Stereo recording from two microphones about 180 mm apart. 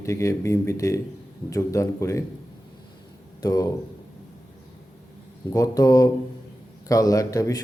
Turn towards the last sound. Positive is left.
turn(degrees=20)  # may be behind; listen again after turning